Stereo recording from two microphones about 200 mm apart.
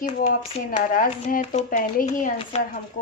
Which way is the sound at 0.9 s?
40° left (ahead or behind).